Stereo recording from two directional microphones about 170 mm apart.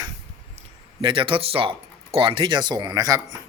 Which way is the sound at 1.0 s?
30° right (ahead or behind).